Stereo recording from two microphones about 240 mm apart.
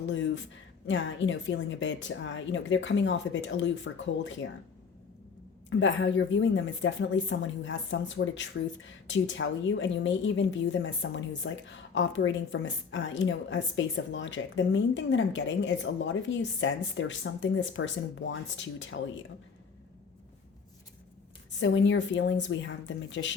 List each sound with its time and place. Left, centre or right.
0.0 s a woman's voice: left
5.8 s a woman's voice: left
21.6 s a woman's voice: left